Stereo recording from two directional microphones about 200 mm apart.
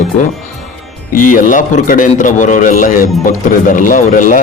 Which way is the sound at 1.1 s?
40° left (ahead or behind).